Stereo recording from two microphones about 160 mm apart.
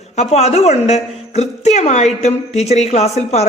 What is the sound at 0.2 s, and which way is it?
A woman's voice, 45° left (ahead or behind).